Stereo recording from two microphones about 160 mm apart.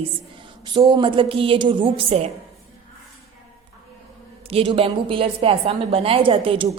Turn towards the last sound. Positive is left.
turn(degrees=-30)  # may be behind; listen again after turning